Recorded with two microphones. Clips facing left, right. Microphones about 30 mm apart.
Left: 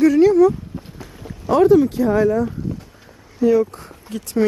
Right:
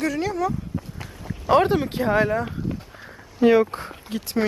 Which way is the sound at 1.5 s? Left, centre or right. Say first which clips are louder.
Left 6 dB; right.